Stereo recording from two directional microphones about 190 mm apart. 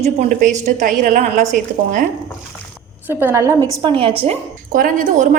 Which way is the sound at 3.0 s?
10° right (ahead or behind).